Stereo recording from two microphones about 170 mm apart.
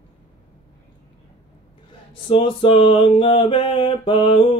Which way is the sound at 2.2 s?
30° left (ahead or behind).